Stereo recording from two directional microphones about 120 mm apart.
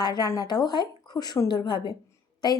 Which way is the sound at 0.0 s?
35° left (ahead or behind).